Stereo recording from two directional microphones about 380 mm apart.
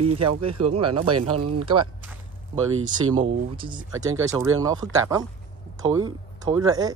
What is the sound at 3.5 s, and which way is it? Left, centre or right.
Speech, centre.